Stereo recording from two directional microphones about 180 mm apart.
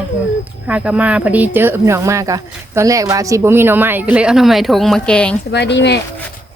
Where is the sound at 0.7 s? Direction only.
5° right (ahead or behind).